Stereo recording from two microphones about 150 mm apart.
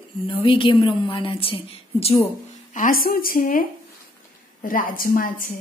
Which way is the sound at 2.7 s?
65° left (ahead or behind).